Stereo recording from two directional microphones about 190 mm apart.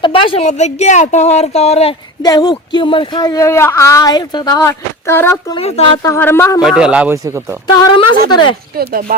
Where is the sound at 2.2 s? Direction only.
20° left (ahead or behind).